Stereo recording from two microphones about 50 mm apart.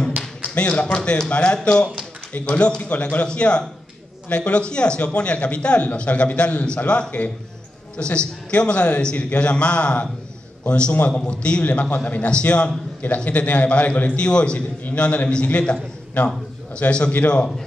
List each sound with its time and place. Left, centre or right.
0.6 s a man's voice: left
11.6 s a man's voice: left